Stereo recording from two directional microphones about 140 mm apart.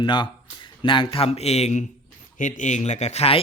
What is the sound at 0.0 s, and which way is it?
Speech, 35° left (ahead or behind).